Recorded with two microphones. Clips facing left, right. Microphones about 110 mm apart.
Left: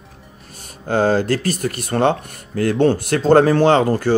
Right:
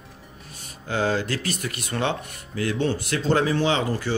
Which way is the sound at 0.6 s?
45° left (ahead or behind).